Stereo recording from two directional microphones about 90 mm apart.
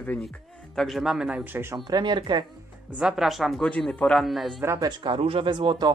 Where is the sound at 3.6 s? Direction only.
10° left (ahead or behind).